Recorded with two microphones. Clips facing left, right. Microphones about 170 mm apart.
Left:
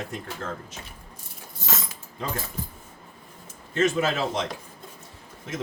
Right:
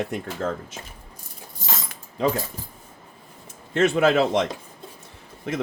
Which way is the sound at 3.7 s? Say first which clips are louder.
Right 5 dB; 65° right (ahead or behind).